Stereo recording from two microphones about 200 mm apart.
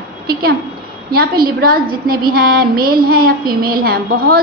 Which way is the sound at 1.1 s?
50° right (ahead or behind).